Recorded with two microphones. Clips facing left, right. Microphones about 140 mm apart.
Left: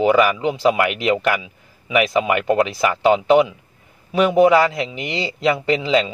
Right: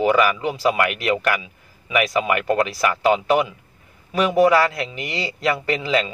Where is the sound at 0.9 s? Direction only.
20° left (ahead or behind).